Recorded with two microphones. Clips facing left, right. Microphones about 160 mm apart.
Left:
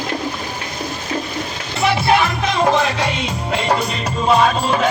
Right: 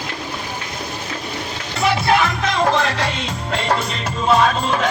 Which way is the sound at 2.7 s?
5° left (ahead or behind).